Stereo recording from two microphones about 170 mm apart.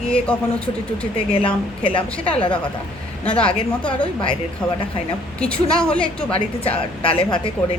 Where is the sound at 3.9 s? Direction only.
30° left (ahead or behind).